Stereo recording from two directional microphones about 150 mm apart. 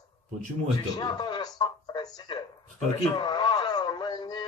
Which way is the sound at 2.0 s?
30° left (ahead or behind).